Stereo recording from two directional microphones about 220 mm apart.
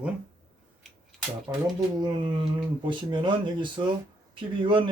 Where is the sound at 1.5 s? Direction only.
10° right (ahead or behind).